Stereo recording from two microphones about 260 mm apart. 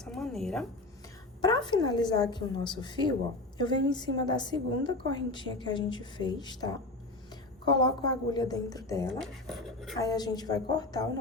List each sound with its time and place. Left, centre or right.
0.0 s a sound: centre
1.4 s a woman's voice: centre
9.2 s speech: centre
10.0 s a woman's voice: centre